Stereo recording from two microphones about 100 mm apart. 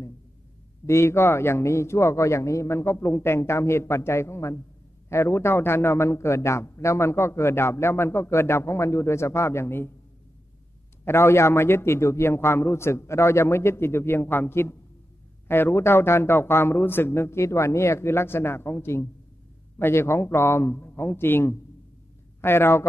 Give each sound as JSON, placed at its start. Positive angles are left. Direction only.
{"t": 0.8, "sound": "a man's voice", "side_deg": 25}
{"t": 11.1, "sound": "a man's voice", "side_deg": 25}